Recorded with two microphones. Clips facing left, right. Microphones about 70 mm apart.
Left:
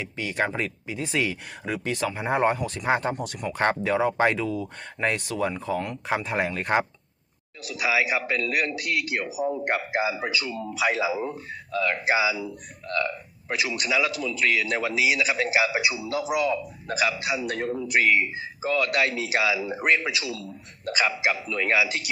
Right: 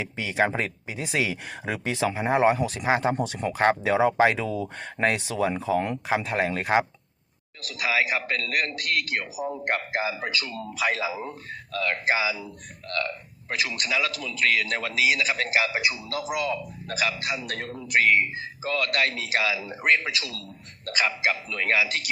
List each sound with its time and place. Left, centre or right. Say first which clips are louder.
0.3 s speech: right 3 dB; centre
1.6 s speech: right 1 dB; right
2.1 s speech: right 3 dB; centre
3.2 s speech: right 3 dB; right
3.5 s speech: right 2 dB; centre
3.8 s speech: right 1 dB; centre
5.1 s speech: right 1 dB; centre
5.7 s speech: right 4 dB; right
6.1 s a man's voice: left 2 dB; centre